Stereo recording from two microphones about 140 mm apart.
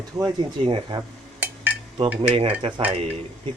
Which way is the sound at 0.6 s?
35° right (ahead or behind).